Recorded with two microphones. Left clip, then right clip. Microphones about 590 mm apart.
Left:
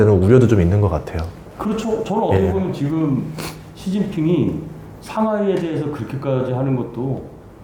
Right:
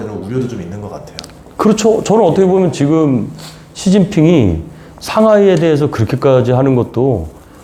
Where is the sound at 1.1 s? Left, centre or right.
Right.